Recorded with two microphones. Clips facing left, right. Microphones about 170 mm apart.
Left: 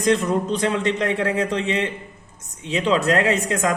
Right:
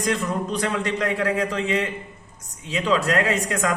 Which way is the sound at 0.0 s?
25° left (ahead or behind).